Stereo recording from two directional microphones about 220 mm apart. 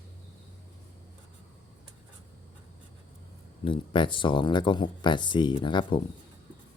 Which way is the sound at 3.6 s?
20° left (ahead or behind).